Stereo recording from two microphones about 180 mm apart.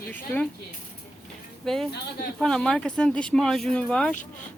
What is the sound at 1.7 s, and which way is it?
Speech, 5° left (ahead or behind).